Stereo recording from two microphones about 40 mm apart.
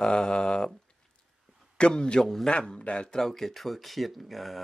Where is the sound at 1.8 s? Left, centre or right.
Left.